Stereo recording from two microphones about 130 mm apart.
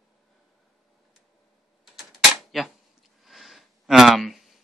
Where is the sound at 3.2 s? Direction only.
Centre (ahead or behind).